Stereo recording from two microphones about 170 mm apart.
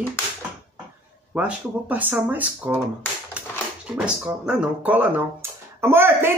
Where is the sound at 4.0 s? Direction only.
5° right (ahead or behind).